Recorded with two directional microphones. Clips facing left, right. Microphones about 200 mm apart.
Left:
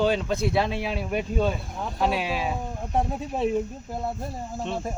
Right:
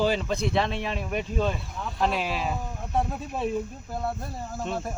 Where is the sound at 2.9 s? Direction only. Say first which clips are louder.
Left 2 dB; 15° left (ahead or behind).